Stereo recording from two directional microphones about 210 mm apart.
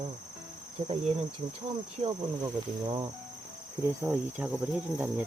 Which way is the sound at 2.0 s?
25° right (ahead or behind).